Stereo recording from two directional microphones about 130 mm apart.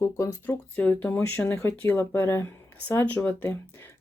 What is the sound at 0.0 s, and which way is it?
Speech, 20° left (ahead or behind).